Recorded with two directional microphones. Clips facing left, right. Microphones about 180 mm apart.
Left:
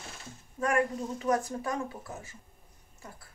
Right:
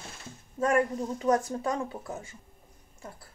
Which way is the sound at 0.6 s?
25° right (ahead or behind).